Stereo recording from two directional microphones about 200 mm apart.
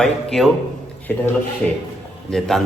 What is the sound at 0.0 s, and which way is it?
Speech, centre (ahead or behind).